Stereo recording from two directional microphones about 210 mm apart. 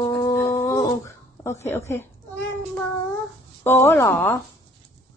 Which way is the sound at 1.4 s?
15° left (ahead or behind).